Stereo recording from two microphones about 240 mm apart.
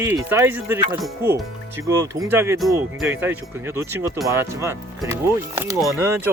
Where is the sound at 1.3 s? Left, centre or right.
Centre.